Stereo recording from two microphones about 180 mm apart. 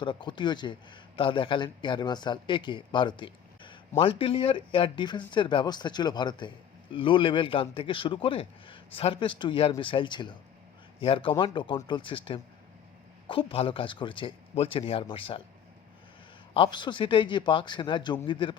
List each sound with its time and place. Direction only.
0.0 s a man's voice: 25° left (ahead or behind)
16.6 s a man's voice: 25° left (ahead or behind)